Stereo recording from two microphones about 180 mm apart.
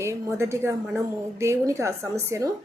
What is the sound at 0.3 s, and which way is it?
A woman's voice, 15° right (ahead or behind).